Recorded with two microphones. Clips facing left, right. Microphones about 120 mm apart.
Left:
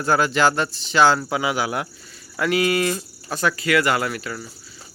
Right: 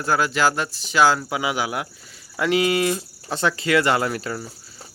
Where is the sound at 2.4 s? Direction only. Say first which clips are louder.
Even; 20° right (ahead or behind).